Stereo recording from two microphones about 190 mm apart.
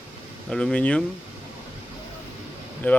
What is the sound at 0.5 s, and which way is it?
Speech, 5° left (ahead or behind).